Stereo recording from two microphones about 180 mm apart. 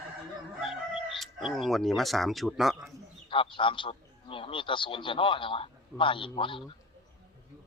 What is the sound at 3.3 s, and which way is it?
A man's voice, 30° left (ahead or behind).